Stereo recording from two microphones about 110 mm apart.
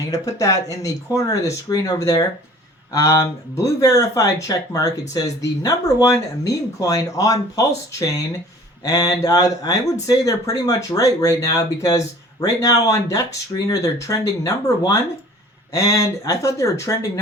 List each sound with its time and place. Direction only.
0.1 s speech: 30° left (ahead or behind)
8.8 s speech: 35° left (ahead or behind)